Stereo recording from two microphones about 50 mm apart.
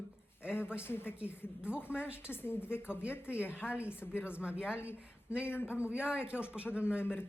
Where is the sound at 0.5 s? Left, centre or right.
Left.